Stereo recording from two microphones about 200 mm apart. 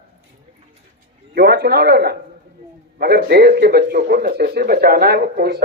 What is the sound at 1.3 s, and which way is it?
Speech, 55° right (ahead or behind).